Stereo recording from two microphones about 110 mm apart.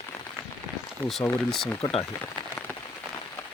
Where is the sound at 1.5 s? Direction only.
5° left (ahead or behind).